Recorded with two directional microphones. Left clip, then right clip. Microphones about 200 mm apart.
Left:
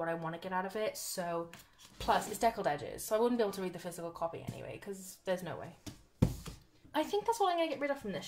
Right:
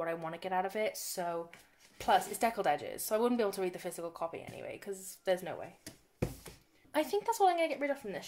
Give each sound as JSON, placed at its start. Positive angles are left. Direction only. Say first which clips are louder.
{"t": 0.0, "sound": "speech", "louder": "even", "side_deg": -45}
{"t": 6.9, "sound": "speech", "louder": "right 1 dB", "side_deg": -40}